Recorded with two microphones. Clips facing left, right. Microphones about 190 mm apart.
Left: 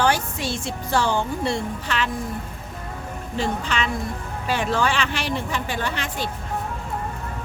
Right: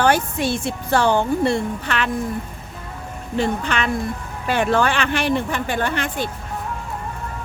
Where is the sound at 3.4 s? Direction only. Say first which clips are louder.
Right 3 dB; 60° right (ahead or behind).